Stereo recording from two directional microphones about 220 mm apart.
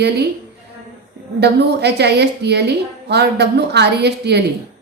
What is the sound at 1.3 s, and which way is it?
A woman's voice, 50° right (ahead or behind).